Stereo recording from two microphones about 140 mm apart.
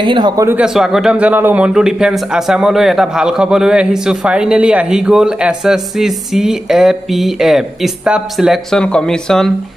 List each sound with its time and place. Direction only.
0.0 s speech: 35° right (ahead or behind)
0.7 s speech: 5° right (ahead or behind)